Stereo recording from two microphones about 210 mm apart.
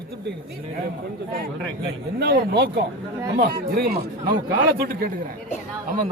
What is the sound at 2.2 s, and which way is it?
Speech, 50° right (ahead or behind).